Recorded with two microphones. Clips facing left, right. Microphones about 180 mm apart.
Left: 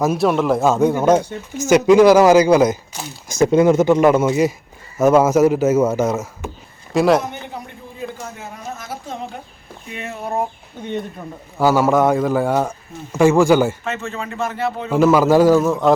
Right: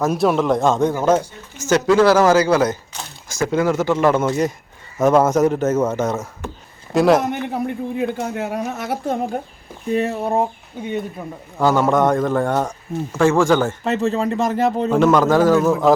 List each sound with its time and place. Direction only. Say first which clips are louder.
0.0 s speech: left 1 dB; centre (ahead or behind)
7.3 s speech: right 9 dB; 65° right (ahead or behind)
9.9 s speech: right 6 dB; 35° right (ahead or behind)
10.8 s speech: right 1 dB; 10° right (ahead or behind)
11.5 s speech: left 1 dB; 5° left (ahead or behind)
13.8 s speech: right 7 dB; 35° right (ahead or behind)
14.8 s speech: left 3 dB; 5° left (ahead or behind)
15.6 s speech: right 1 dB; centre (ahead or behind)